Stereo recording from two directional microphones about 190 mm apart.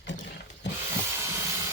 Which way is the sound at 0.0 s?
70° left (ahead or behind).